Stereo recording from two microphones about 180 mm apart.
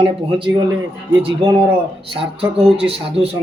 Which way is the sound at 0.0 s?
30° right (ahead or behind).